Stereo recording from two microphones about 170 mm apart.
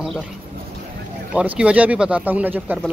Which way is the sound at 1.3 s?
5° right (ahead or behind).